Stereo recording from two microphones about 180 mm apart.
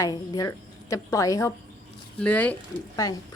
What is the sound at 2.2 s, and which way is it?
Speech, 5° left (ahead or behind).